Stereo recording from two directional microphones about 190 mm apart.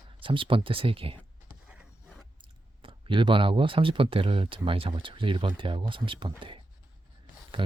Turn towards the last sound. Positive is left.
turn(degrees=-25)  # may be behind; listen again after turning